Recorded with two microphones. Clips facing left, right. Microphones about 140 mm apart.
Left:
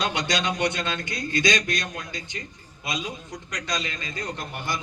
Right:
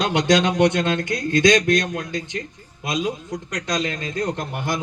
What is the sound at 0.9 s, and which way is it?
A man's voice, 50° right (ahead or behind).